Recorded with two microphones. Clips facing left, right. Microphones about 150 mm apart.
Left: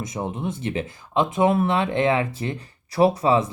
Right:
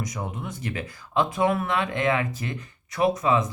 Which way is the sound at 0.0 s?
25° left (ahead or behind).